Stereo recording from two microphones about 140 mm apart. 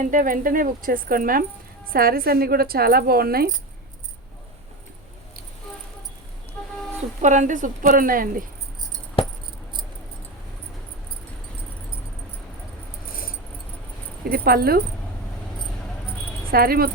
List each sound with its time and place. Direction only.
0.0 s speech: 70° right (ahead or behind); by 3.5 s 90° right
6.6 s a sound: 5° left (ahead or behind)
7.2 s a woman's voice: 65° right (ahead or behind); by 8.4 s 90° right
14.3 s speech: 90° right
16.5 s speech: 90° right